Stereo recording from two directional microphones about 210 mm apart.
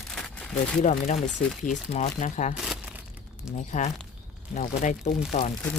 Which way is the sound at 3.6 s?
35° left (ahead or behind).